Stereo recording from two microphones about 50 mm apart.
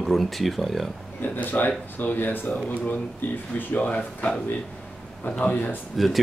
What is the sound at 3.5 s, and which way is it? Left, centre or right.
Speech, left.